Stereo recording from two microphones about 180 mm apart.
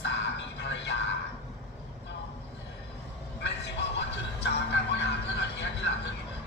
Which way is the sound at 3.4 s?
70° left (ahead or behind).